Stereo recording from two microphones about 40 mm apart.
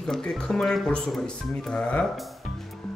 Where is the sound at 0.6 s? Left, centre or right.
Left.